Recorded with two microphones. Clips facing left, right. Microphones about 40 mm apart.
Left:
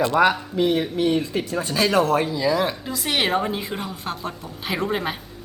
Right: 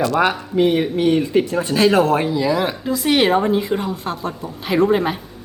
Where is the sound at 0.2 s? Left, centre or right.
Right.